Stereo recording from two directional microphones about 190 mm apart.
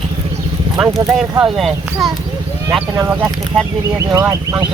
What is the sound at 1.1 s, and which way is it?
Speech, centre (ahead or behind).